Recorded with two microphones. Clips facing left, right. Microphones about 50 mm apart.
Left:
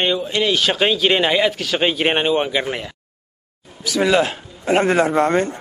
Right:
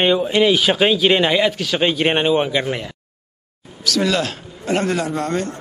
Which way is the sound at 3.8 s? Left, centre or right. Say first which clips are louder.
Left 3 dB; centre.